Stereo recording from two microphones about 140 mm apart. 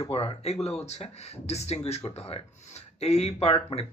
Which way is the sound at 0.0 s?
45° left (ahead or behind).